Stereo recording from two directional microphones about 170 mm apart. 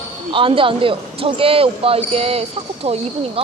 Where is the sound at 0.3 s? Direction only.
30° right (ahead or behind).